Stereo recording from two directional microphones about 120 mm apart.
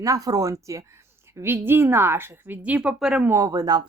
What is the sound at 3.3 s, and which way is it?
Speech, 30° right (ahead or behind).